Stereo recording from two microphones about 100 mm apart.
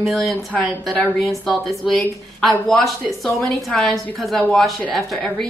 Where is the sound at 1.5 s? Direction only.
Centre (ahead or behind).